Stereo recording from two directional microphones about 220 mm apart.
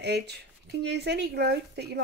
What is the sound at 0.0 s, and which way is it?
Speech, 50° right (ahead or behind).